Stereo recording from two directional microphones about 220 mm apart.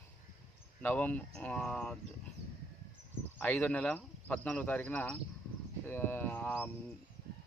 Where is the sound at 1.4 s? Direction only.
5° left (ahead or behind).